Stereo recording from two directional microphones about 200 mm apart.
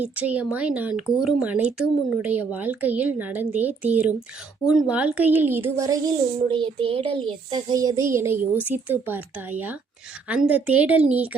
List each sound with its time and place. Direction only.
0.0 s speech: 5° right (ahead or behind)
6.5 s a child's voice: 25° right (ahead or behind); by 11.3 s 5° right (ahead or behind)